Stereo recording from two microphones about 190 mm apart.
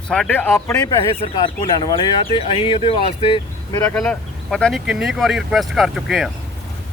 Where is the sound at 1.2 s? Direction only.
25° left (ahead or behind).